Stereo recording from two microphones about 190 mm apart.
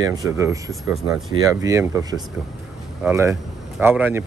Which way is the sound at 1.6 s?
15° right (ahead or behind).